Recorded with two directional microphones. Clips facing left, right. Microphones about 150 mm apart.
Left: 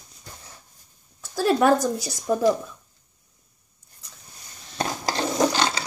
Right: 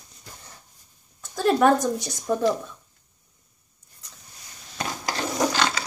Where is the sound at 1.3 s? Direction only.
5° left (ahead or behind).